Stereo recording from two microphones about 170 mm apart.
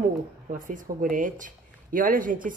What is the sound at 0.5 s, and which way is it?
Speech, 50° right (ahead or behind).